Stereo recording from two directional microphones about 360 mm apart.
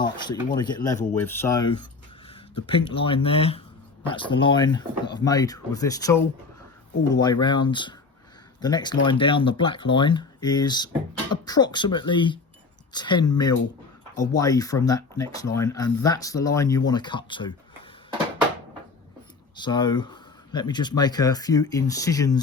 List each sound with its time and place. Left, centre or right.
0.0 s speech: centre
19.5 s speech: centre